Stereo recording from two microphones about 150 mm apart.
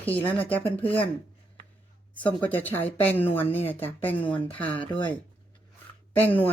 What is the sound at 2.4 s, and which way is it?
Speech, 10° left (ahead or behind).